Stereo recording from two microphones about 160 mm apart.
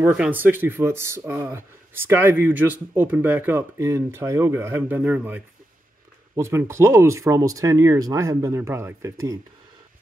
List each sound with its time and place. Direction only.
0.0 s speech: 10° right (ahead or behind)